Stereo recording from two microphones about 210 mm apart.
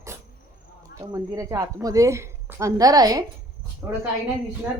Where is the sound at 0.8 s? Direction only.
15° right (ahead or behind).